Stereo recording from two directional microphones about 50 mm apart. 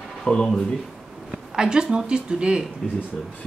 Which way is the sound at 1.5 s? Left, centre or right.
Centre.